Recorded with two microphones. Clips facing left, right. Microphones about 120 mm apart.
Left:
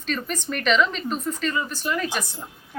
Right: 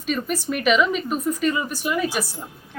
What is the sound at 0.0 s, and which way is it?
Speech, 10° right (ahead or behind).